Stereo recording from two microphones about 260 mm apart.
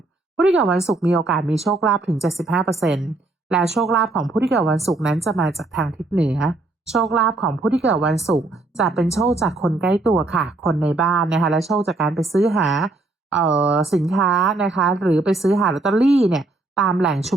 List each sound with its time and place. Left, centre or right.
0.3 s a woman's voice: centre